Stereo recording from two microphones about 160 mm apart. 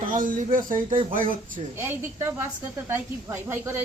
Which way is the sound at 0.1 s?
55° right (ahead or behind).